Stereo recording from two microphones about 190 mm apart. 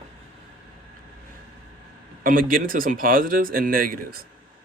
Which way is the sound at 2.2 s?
50° right (ahead or behind).